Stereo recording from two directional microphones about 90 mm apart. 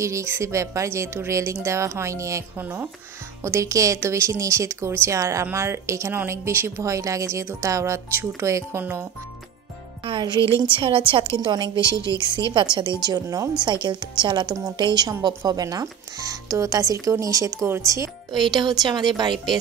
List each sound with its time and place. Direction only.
0.0 s a woman's voice: 35° right (ahead or behind)
2.6 s a woman's voice: 25° right (ahead or behind)
10.0 s a woman's voice: 60° right (ahead or behind)
10.6 s a woman's voice: 70° right (ahead or behind); by 18.1 s 35° right (ahead or behind)
18.4 s a woman's voice: 55° right (ahead or behind)
19.3 s speech: centre (ahead or behind)